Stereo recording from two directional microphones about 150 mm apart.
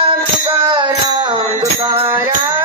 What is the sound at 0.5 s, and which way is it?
Music, 35° right (ahead or behind).